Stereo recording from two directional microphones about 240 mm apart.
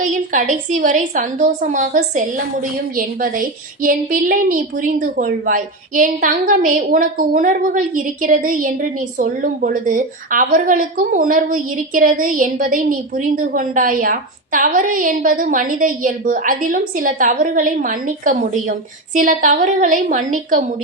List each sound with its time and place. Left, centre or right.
0.0 s a woman's voice: right